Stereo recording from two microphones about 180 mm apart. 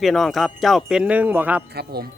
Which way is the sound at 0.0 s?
Centre (ahead or behind).